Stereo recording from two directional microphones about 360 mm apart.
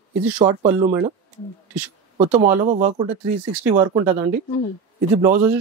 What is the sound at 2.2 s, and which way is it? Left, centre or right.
Speech, centre.